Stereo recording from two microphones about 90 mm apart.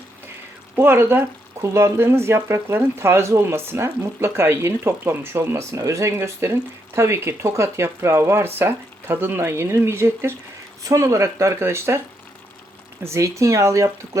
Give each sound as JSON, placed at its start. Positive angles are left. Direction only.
{"t": 0.8, "sound": "speech", "side_deg": -25}
{"t": 13.1, "sound": "speech", "side_deg": -35}